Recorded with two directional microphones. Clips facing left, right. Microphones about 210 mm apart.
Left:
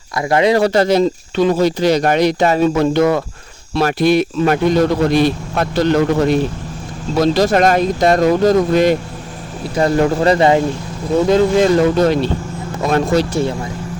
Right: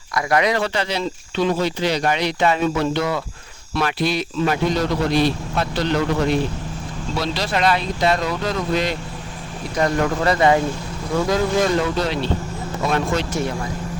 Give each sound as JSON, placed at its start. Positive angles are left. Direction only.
{"t": 0.1, "sound": "speech", "side_deg": 25}
{"t": 9.7, "sound": "speech", "side_deg": 30}
{"t": 11.8, "sound": "speech", "side_deg": 45}